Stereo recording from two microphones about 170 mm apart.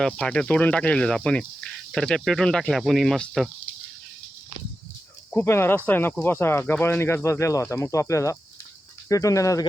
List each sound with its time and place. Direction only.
0.0 s speech: 5° left (ahead or behind)
5.3 s speech: 15° left (ahead or behind)